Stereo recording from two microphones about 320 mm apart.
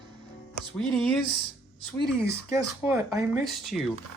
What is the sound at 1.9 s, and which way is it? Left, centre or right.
Speech, left.